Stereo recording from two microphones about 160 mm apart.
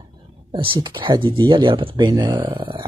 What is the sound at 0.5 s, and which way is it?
Speech, 30° right (ahead or behind).